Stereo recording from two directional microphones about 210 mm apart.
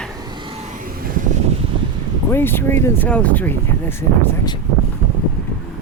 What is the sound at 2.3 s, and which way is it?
Speech, 10° left (ahead or behind).